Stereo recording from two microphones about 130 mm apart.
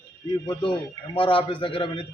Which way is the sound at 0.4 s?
40° left (ahead or behind).